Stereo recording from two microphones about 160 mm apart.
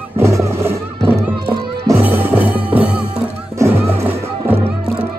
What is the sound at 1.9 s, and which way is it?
Music, 15° right (ahead or behind).